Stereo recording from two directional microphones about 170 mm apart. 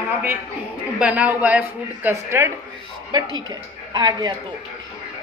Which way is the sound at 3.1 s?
25° right (ahead or behind).